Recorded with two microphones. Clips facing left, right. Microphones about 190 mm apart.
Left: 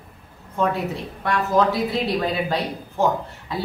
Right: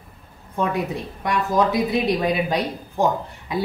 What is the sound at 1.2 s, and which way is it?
Speech, 15° right (ahead or behind).